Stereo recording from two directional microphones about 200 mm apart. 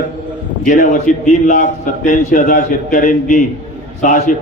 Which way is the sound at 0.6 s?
40° left (ahead or behind).